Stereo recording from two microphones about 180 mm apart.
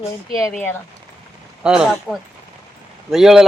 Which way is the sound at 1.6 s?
5° right (ahead or behind).